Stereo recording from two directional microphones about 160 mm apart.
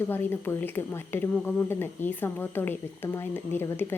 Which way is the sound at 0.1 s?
15° left (ahead or behind).